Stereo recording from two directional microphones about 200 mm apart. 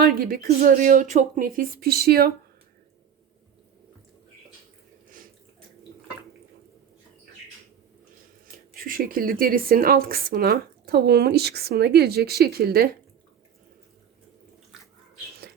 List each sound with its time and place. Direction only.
0.0 s speech: 50° right (ahead or behind)
8.7 s speech: 45° right (ahead or behind)